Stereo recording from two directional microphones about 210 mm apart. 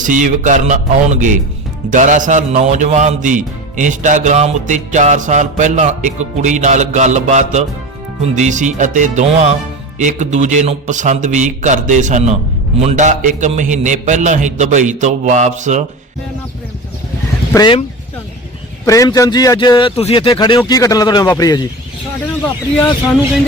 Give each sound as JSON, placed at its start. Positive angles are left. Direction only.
{"t": 0.0, "sound": "a man's voice", "side_deg": -35}
{"t": 17.5, "sound": "speech", "side_deg": 20}
{"t": 18.9, "sound": "speech", "side_deg": 15}